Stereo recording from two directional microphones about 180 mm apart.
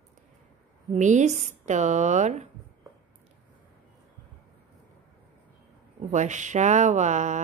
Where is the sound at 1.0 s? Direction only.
40° right (ahead or behind).